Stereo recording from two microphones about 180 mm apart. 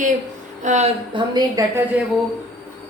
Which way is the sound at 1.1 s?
25° right (ahead or behind).